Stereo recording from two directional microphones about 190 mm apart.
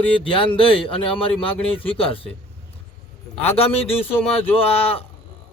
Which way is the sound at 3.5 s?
30° left (ahead or behind).